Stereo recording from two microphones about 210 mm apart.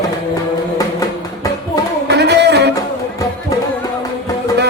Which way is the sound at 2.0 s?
55° right (ahead or behind).